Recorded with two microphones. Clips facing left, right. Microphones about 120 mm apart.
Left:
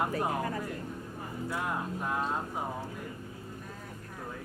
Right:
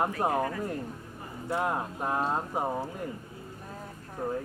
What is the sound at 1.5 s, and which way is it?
Speech, 30° right (ahead or behind).